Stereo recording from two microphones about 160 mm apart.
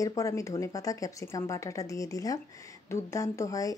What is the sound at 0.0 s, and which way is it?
Speech, 20° left (ahead or behind).